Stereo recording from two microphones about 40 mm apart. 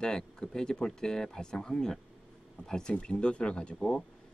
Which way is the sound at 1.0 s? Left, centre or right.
Centre.